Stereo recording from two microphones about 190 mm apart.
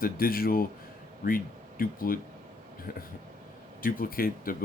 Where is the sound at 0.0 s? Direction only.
50° left (ahead or behind).